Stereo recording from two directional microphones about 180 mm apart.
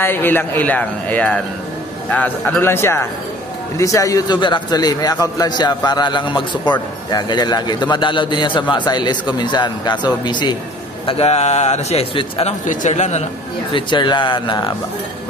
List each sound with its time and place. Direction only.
0.0 s a man's voice: 10° left (ahead or behind); by 13.2 s 40° left (ahead or behind)
13.7 s a man's voice: 25° left (ahead or behind)